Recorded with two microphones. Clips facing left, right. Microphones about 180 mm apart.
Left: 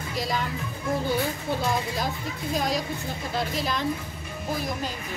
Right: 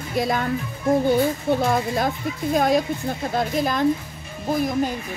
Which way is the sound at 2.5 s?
55° right (ahead or behind).